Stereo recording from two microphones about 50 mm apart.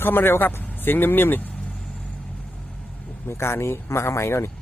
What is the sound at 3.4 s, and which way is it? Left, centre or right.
Speech, left.